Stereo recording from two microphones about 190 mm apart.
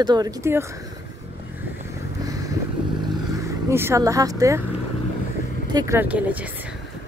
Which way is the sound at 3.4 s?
15° right (ahead or behind).